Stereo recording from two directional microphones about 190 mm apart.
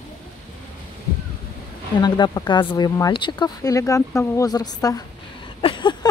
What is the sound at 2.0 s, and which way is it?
Speech, 25° left (ahead or behind).